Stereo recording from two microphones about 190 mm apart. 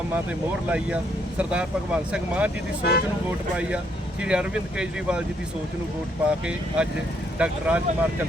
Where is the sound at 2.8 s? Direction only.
60° left (ahead or behind).